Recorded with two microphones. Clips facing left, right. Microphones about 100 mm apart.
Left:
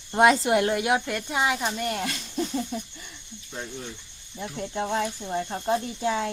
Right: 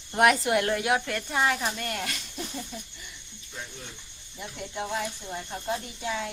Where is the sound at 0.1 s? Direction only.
25° left (ahead or behind); by 1.7 s 5° left (ahead or behind).